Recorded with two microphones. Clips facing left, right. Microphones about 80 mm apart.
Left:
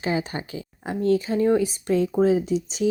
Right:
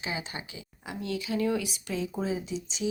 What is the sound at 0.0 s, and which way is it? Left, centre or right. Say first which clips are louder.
Speech: left 10 dB; left.